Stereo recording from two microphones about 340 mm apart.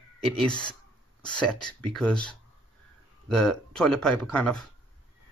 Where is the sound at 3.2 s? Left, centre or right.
Centre.